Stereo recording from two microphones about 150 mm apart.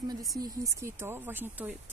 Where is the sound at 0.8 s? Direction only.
15° right (ahead or behind).